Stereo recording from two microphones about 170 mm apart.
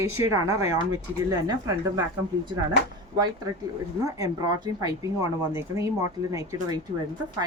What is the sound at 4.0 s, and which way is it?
Speech, 20° right (ahead or behind).